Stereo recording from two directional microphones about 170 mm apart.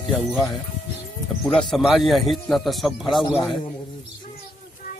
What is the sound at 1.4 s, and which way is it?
Speech, 5° left (ahead or behind).